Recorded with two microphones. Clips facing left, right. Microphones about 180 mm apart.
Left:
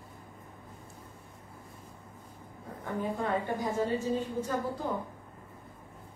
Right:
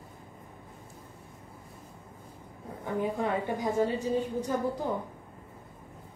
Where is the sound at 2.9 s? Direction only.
15° right (ahead or behind).